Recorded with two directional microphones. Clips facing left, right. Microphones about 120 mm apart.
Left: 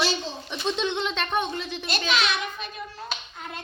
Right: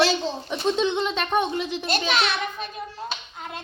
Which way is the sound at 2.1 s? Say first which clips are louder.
Left 2 dB; 50° right (ahead or behind).